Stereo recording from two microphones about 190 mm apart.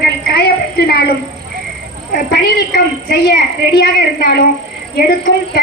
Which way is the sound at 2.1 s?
55° left (ahead or behind).